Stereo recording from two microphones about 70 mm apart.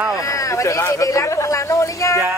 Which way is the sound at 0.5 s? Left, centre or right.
Left.